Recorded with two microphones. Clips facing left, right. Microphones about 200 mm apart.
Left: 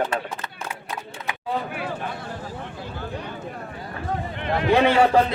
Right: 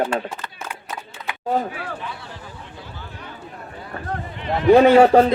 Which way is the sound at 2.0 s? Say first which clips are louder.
Left 3 dB; 50° left (ahead or behind).